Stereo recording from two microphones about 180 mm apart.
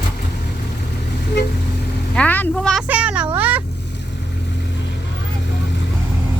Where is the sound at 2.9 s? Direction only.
5° right (ahead or behind).